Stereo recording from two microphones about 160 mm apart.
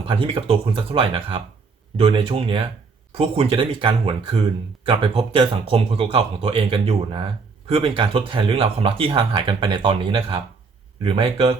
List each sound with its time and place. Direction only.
0.1 s speech: 35° right (ahead or behind)